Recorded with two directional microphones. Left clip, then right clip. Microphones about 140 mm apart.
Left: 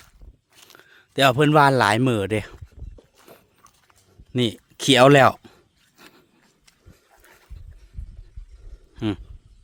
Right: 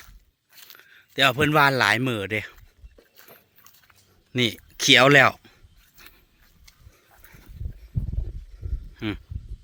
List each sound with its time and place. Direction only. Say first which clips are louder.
0.5 s a sound: right 1 dB; centre (ahead or behind)
0.8 s a man's voice: left 2 dB; 55° left (ahead or behind)
4.3 s speech: even; 35° left (ahead or behind); by 5.5 s 55° left (ahead or behind)
7.2 s dog: even; 5° left (ahead or behind)
9.0 s speech: left 4 dB; 45° left (ahead or behind)